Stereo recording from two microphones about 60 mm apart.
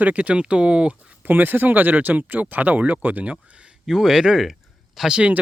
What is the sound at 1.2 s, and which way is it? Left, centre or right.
Speech, right.